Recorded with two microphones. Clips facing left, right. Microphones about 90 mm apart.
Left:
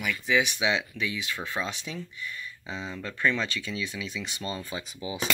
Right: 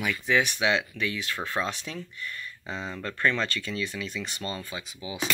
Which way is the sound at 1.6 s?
20° right (ahead or behind).